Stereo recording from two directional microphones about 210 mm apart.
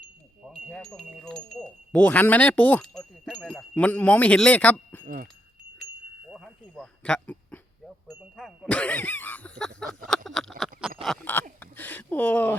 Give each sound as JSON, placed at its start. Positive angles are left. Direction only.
{"t": 0.4, "sound": "wind chime", "side_deg": 0}
{"t": 1.5, "sound": "speech", "side_deg": 5}
{"t": 5.0, "sound": "speech", "side_deg": -40}
{"t": 6.3, "sound": "a sound", "side_deg": 0}
{"t": 8.2, "sound": "speech", "side_deg": 0}
{"t": 11.0, "sound": "a sound", "side_deg": 5}